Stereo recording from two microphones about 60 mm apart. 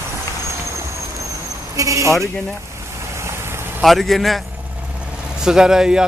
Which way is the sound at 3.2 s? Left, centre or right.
Right.